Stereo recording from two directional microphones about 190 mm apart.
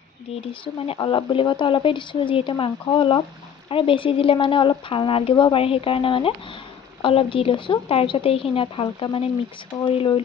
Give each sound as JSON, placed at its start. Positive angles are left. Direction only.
{"t": 0.5, "sound": "a woman's voice", "side_deg": 30}